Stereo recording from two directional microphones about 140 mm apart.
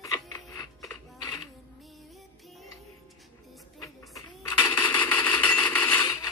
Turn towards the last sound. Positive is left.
turn(degrees=10)  # may be behind; listen again after turning